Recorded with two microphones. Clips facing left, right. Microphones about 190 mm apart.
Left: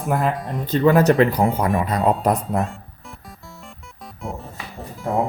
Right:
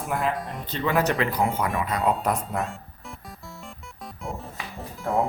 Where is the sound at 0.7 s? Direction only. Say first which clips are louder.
Left 9 dB; 45° left (ahead or behind).